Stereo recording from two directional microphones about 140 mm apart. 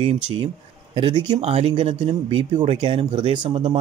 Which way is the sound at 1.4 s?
45° right (ahead or behind).